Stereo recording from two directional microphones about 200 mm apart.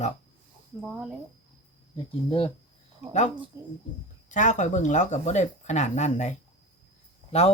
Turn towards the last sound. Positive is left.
turn(degrees=30)  # may be behind; listen again after turning